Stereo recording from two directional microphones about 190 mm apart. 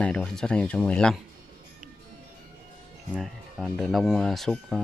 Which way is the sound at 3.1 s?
5° right (ahead or behind).